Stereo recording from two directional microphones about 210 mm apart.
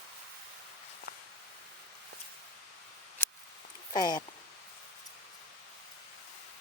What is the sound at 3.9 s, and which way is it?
Speech, 20° left (ahead or behind).